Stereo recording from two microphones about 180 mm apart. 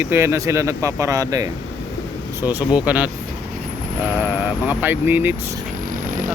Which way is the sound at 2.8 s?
5° right (ahead or behind).